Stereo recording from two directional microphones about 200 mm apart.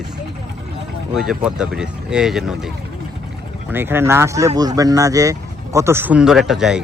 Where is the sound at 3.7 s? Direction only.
10° right (ahead or behind).